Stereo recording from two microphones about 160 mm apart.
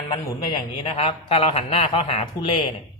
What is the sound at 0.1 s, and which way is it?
A man's voice, 30° left (ahead or behind).